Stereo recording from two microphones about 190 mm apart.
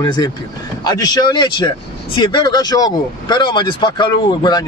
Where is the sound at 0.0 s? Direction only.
25° left (ahead or behind).